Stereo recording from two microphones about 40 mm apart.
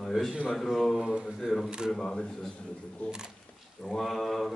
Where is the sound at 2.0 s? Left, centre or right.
Centre.